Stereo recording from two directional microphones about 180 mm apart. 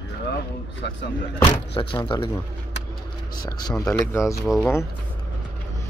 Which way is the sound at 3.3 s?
20° left (ahead or behind).